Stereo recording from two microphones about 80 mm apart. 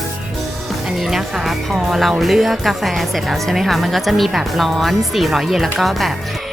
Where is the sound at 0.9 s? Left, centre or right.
Centre.